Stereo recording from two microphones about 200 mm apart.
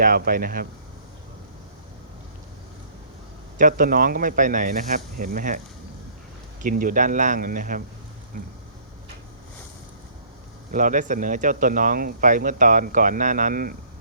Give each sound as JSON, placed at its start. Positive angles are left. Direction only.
{"t": 0.0, "sound": "speech", "side_deg": -45}
{"t": 3.6, "sound": "speech", "side_deg": -45}
{"t": 6.6, "sound": "speech", "side_deg": -45}
{"t": 10.7, "sound": "speech", "side_deg": -40}